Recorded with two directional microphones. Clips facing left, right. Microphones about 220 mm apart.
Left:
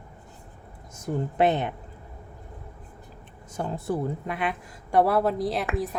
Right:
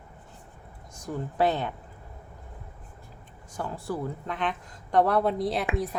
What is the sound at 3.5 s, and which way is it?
Speech, 20° left (ahead or behind).